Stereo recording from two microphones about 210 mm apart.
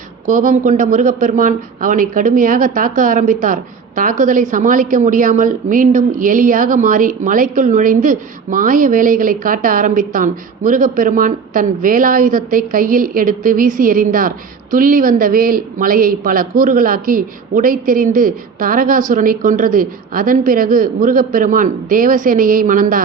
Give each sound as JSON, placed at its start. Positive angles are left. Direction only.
{"t": 0.3, "sound": "a man's voice", "side_deg": -40}